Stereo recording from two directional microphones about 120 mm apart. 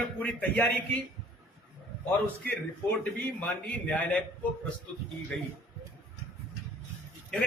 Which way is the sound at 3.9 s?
15° left (ahead or behind).